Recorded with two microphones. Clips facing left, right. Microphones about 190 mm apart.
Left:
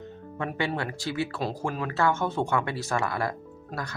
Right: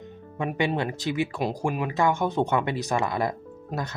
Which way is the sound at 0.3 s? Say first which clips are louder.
Right 4 dB; 15° right (ahead or behind).